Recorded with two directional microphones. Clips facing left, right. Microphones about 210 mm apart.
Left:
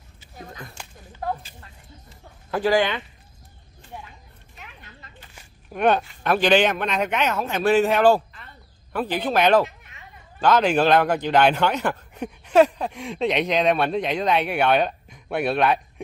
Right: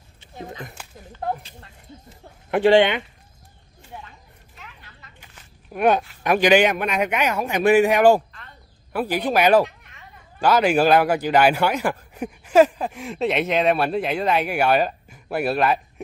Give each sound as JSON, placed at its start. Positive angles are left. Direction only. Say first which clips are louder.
{"t": 0.4, "sound": "speech", "louder": "right 5 dB", "side_deg": -20}
{"t": 2.5, "sound": "speech", "louder": "right 5 dB", "side_deg": -25}
{"t": 5.7, "sound": "speech", "louder": "right 1 dB", "side_deg": -10}